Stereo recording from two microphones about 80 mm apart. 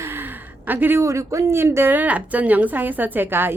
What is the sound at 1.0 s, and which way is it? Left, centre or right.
A woman's voice, right.